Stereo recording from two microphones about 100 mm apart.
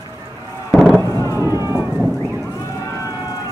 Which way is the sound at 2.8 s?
30° left (ahead or behind).